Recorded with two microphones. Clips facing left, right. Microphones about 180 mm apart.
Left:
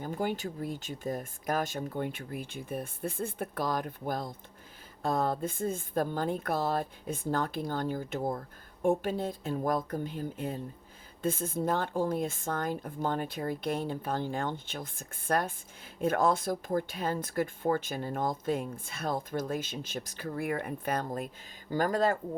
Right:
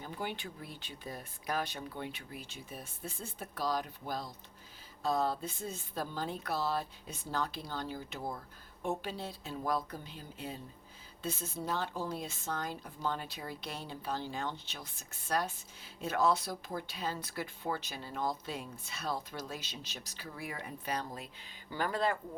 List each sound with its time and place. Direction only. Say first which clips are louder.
0.0 s a woman's voice: left 8 dB; 45° left (ahead or behind)